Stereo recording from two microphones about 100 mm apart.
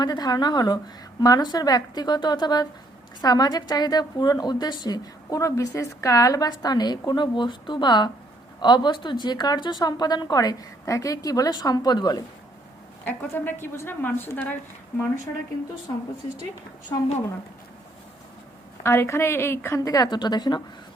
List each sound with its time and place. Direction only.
0.0 s a woman's voice: 45° left (ahead or behind)
13.1 s a woman's voice: 20° left (ahead or behind)
18.8 s a woman's voice: 25° left (ahead or behind); by 20.6 s 45° left (ahead or behind)